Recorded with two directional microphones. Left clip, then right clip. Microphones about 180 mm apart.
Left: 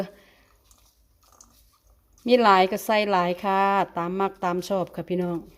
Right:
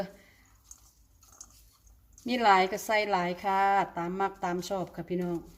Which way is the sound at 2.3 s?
40° left (ahead or behind).